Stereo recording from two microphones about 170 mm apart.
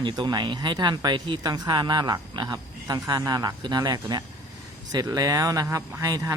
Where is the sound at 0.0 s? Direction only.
25° right (ahead or behind).